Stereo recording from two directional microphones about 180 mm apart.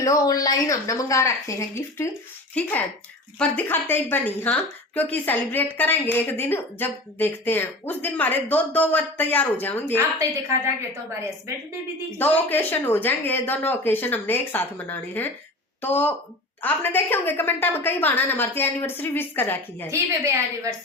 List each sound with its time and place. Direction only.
0.0 s a woman's voice: 20° left (ahead or behind)
12.2 s a woman's voice: 10° left (ahead or behind)
19.9 s a woman's voice: 15° right (ahead or behind)